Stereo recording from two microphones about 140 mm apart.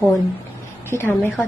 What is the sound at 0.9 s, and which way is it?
Speech, 15° left (ahead or behind).